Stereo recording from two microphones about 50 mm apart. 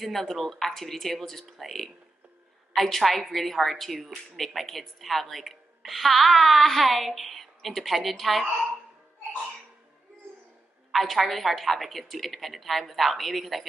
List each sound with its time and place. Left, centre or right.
0.0 s a woman's voice: centre
10.9 s a woman's voice: centre